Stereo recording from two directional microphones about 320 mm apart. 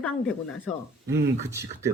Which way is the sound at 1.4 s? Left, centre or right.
Centre.